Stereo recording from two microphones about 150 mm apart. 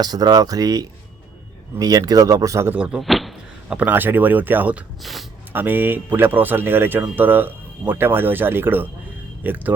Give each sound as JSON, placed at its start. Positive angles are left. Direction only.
{"t": 0.0, "sound": "speech", "side_deg": -25}
{"t": 2.7, "sound": "speech", "side_deg": -5}
{"t": 5.0, "sound": "speech", "side_deg": 0}
{"t": 5.5, "sound": "speech", "side_deg": -15}